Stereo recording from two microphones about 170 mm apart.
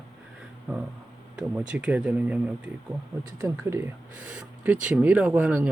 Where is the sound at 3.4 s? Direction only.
15° right (ahead or behind).